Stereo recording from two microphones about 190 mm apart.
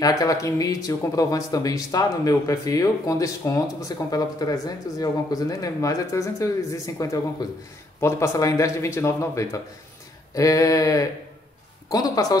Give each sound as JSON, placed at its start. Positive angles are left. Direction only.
{"t": 0.0, "sound": "speech", "side_deg": 20}